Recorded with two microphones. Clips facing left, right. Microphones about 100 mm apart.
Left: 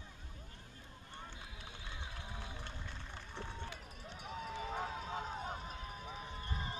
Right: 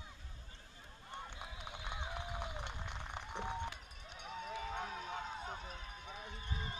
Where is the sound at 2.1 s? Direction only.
20° right (ahead or behind).